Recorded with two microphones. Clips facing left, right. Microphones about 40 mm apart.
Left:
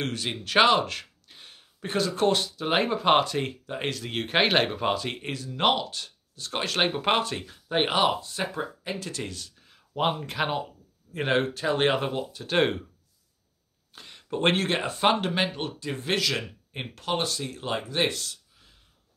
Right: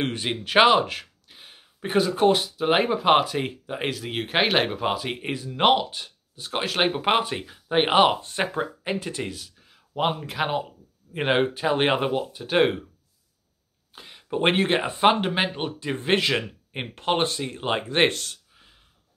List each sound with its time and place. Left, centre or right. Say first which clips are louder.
0.0 s speech: right 4 dB; right
7.9 s speech: right 5 dB; right; by 10.6 s centre
11.1 s speech: right 3 dB; right
13.9 s speech: right 3 dB; centre; by 18.7 s right